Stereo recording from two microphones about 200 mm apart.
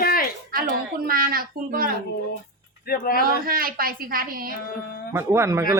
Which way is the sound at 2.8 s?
45° left (ahead or behind).